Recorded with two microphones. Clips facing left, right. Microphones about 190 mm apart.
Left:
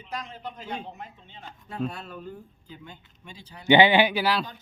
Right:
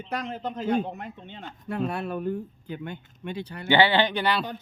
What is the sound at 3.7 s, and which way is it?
Speech, 15° left (ahead or behind).